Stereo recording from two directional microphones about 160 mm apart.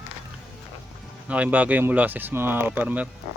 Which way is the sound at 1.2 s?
10° right (ahead or behind).